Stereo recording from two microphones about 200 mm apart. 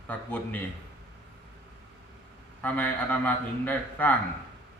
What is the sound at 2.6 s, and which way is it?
Speech, 10° left (ahead or behind).